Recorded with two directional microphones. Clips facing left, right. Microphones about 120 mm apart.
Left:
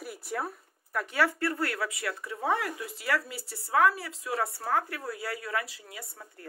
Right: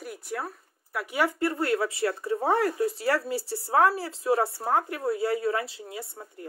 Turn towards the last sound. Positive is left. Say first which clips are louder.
# right 6 dB
turn(degrees=-25)  # may be behind; listen again after turning